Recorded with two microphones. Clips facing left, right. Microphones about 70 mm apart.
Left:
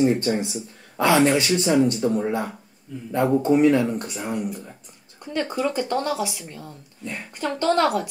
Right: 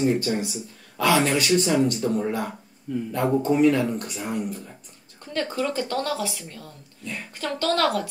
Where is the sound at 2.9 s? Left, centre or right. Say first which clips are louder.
Right 8 dB; right.